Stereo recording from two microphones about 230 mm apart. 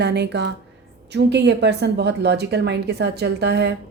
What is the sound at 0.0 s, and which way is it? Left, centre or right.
A woman's voice, right.